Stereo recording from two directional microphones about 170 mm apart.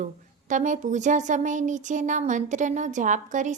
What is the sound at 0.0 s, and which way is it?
Speech, 45° right (ahead or behind).